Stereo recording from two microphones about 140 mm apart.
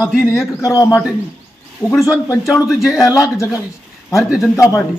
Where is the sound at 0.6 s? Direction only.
25° left (ahead or behind).